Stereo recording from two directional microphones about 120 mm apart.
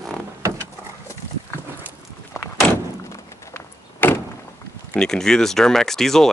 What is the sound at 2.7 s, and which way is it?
Door, 25° left (ahead or behind).